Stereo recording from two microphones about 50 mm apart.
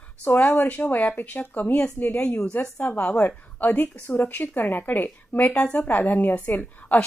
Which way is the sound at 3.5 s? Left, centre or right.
Left.